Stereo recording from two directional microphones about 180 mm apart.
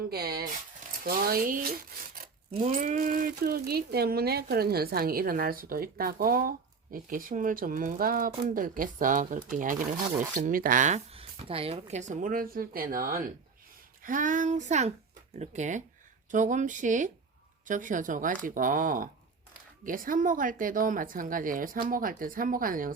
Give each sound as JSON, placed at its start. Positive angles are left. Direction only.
{"t": 0.1, "sound": "a woman's voice", "side_deg": -60}